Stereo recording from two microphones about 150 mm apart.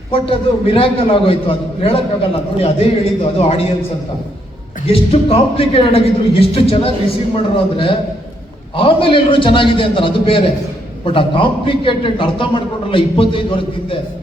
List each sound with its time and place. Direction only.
0.1 s a man's voice: 35° left (ahead or behind)
4.9 s a man's voice: 40° left (ahead or behind)